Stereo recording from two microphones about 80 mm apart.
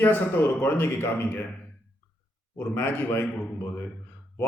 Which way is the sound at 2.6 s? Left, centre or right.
Left.